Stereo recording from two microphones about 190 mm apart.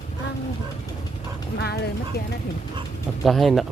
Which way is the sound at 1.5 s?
60° left (ahead or behind).